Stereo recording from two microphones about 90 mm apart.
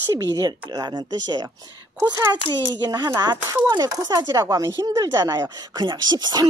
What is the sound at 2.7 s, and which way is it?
Speech, 50° right (ahead or behind).